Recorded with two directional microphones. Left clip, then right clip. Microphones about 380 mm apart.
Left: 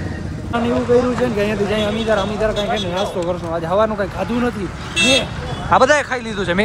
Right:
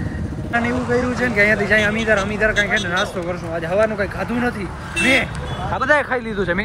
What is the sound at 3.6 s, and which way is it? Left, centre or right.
Speech, centre.